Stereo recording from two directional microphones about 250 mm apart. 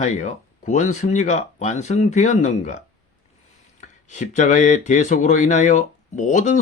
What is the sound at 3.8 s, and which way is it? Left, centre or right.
Speech, left.